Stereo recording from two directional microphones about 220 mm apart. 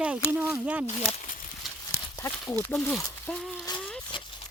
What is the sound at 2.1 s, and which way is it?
Speech, 15° left (ahead or behind).